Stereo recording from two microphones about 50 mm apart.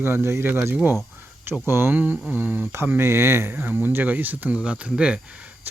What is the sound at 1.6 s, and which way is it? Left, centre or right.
Speech, right.